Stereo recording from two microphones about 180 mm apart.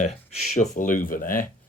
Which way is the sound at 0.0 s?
40° left (ahead or behind).